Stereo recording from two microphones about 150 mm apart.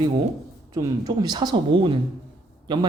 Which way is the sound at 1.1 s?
30° right (ahead or behind).